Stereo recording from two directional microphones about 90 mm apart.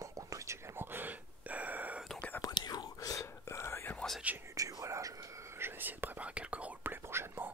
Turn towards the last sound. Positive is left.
turn(degrees=-25)  # may be behind; listen again after turning